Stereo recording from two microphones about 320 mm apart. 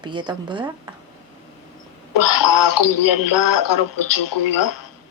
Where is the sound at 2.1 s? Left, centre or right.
Left.